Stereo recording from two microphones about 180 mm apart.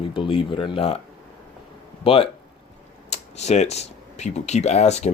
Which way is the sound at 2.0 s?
30° left (ahead or behind).